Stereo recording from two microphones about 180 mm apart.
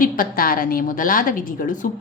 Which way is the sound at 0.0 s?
50° left (ahead or behind).